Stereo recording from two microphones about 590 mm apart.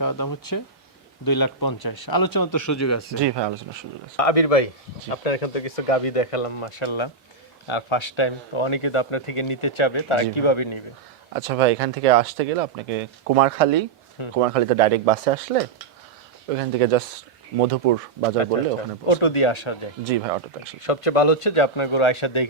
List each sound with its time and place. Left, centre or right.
0.0 s speech: left
3.2 s speech: right
4.2 s speech: left
11.3 s speech: right
16.5 s speech: right
19.0 s speech: left
20.1 s speech: right
20.8 s speech: left